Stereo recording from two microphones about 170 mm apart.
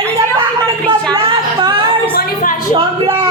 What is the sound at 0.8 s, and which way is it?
Speech, 5° left (ahead or behind).